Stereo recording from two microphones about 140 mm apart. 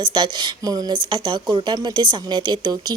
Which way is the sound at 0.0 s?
35° right (ahead or behind).